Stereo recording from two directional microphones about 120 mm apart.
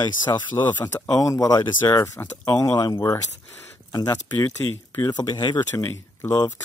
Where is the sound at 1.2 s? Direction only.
30° left (ahead or behind).